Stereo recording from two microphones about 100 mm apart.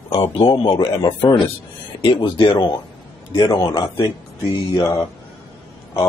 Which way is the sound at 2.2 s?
55° left (ahead or behind).